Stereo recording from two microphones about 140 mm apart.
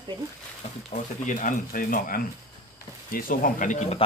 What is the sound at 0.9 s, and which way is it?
Speech, 70° left (ahead or behind).